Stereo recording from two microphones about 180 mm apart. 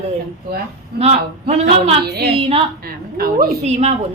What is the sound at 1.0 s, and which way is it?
Speech, 35° right (ahead or behind).